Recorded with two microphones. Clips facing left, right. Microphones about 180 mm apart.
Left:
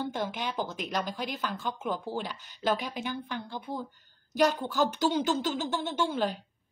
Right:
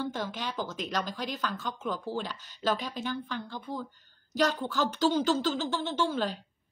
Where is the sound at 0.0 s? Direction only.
15° left (ahead or behind).